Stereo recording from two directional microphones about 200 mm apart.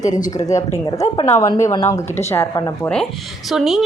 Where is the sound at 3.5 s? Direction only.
Centre (ahead or behind).